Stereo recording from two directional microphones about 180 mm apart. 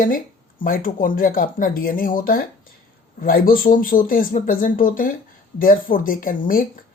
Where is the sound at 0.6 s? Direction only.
50° left (ahead or behind).